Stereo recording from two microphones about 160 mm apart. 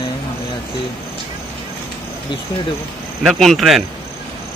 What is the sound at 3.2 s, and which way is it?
Speech, centre (ahead or behind).